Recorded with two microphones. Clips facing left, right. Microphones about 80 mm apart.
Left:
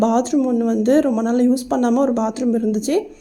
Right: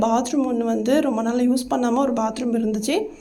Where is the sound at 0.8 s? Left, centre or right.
Left.